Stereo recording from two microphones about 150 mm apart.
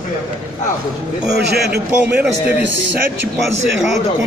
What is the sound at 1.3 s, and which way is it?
Speech, 90° right.